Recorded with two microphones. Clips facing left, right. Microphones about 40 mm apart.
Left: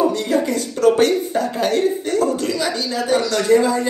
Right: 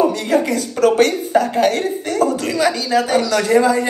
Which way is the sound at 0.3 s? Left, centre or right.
Right.